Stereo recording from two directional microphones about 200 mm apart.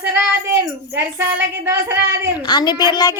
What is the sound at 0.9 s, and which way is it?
Speech, 10° right (ahead or behind).